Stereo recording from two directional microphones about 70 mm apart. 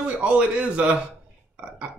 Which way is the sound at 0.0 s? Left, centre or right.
Centre.